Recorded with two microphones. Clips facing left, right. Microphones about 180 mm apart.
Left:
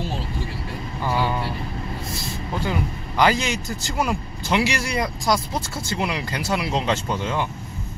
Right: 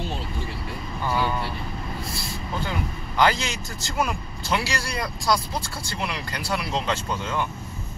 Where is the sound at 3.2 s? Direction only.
15° left (ahead or behind).